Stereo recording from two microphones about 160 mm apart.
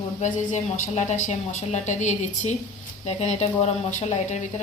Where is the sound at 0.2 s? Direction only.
45° left (ahead or behind).